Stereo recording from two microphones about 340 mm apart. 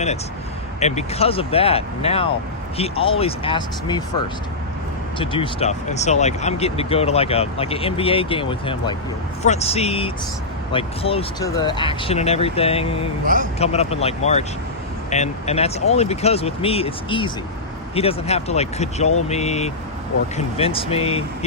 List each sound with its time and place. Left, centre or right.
0.8 s speech: centre
5.1 s speech: centre
13.2 s speech: right
13.6 s speech: centre